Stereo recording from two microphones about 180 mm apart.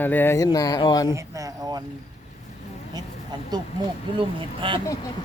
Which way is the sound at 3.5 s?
25° right (ahead or behind).